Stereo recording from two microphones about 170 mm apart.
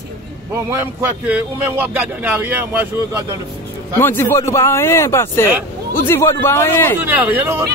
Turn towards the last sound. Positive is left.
turn(degrees=-10)  # may be behind; listen again after turning